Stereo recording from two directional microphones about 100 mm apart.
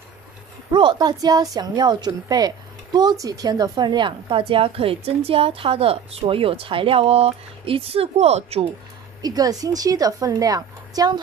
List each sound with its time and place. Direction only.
0.7 s a woman's voice: 50° right (ahead or behind); by 8.6 s 90° right
9.2 s a woman's voice: 40° right (ahead or behind)